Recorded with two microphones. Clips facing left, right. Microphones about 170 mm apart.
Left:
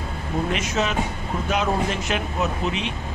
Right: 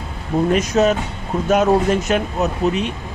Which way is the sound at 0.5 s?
40° right (ahead or behind).